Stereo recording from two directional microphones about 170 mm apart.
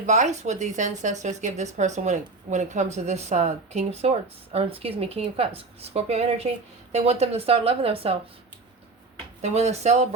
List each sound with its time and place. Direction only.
0.0 s speech: 45° right (ahead or behind)
9.4 s speech: 40° right (ahead or behind)